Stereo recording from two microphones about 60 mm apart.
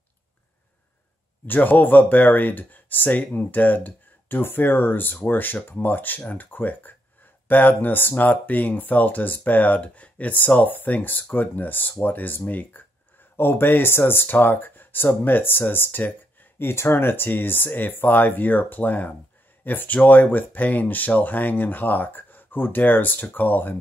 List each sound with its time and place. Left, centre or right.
1.5 s speech: left